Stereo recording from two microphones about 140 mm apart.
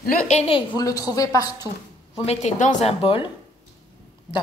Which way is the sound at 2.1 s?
50° left (ahead or behind).